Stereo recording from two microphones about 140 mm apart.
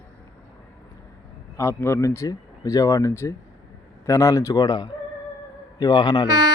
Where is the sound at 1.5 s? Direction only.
20° left (ahead or behind).